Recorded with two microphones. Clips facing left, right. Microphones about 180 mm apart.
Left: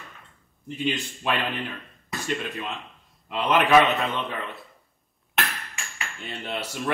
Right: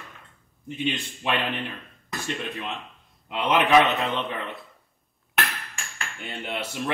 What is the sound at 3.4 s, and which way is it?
Speech, centre (ahead or behind).